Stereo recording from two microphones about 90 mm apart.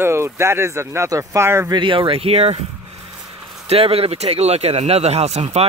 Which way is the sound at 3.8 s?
90° right.